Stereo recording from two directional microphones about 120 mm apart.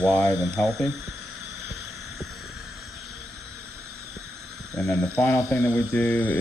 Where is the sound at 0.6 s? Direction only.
Centre (ahead or behind).